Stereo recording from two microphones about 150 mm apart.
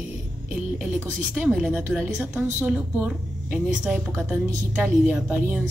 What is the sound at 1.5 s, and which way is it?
A woman's voice, 5° right (ahead or behind).